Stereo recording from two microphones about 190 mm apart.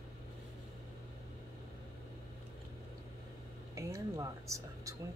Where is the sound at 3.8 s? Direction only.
15° right (ahead or behind).